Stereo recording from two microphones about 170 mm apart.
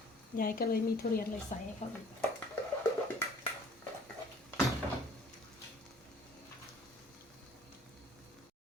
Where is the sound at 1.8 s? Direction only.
40° left (ahead or behind).